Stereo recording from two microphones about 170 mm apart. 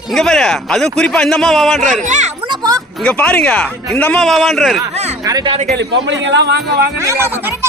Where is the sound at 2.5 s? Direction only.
20° right (ahead or behind).